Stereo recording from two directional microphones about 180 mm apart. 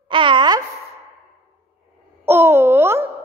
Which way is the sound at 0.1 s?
25° right (ahead or behind).